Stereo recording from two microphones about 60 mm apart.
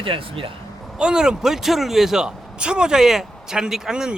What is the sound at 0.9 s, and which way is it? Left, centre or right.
A man's voice, centre.